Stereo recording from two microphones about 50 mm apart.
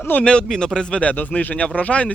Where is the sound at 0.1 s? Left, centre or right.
Left.